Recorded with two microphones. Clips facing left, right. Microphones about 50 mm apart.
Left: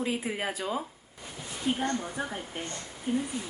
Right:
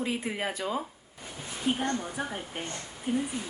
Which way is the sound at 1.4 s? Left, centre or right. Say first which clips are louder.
Even; centre.